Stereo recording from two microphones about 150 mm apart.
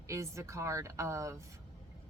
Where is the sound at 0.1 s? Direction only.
20° right (ahead or behind).